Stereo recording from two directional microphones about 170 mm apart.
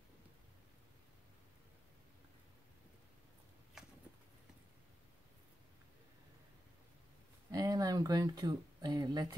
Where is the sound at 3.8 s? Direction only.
5° right (ahead or behind).